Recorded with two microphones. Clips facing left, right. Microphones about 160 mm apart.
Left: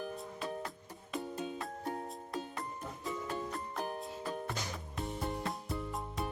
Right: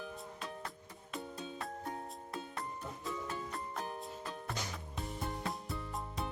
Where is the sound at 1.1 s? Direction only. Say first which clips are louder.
Left 5 dB; centre (ahead or behind).